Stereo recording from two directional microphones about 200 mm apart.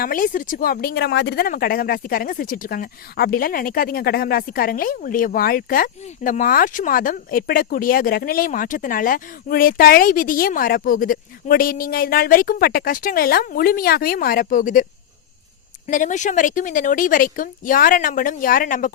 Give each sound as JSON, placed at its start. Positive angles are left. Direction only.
{"t": 0.0, "sound": "speech", "side_deg": 45}
{"t": 15.9, "sound": "speech", "side_deg": 40}